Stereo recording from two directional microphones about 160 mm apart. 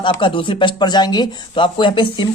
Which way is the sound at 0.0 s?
30° left (ahead or behind).